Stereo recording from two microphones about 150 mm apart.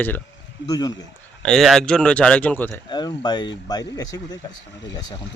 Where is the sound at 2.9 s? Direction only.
30° left (ahead or behind).